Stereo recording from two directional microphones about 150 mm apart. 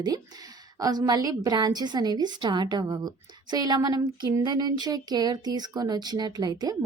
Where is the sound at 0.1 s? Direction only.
25° right (ahead or behind).